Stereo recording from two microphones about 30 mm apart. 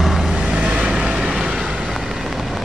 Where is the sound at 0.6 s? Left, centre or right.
Right.